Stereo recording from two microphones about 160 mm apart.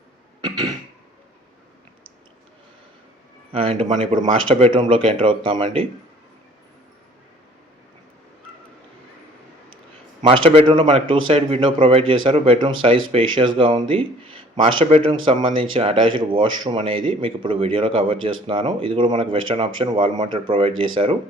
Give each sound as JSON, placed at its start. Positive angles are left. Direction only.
{"t": 3.5, "sound": "speech", "side_deg": -35}
{"t": 10.2, "sound": "speech", "side_deg": -35}